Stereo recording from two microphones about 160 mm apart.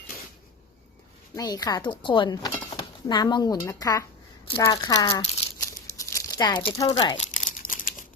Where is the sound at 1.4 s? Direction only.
25° left (ahead or behind).